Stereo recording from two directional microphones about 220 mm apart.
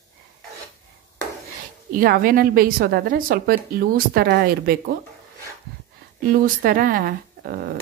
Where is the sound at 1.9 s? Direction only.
40° right (ahead or behind).